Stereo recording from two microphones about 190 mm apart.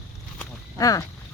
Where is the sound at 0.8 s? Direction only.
20° left (ahead or behind).